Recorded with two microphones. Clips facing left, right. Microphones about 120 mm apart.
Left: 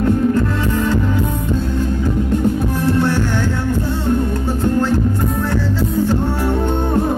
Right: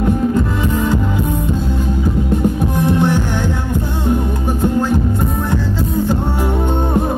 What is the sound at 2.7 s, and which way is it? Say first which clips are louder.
Music: right 1 dB; 15° right (ahead or behind).